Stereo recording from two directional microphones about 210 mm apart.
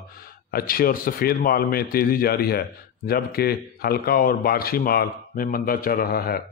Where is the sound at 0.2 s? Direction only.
45° left (ahead or behind).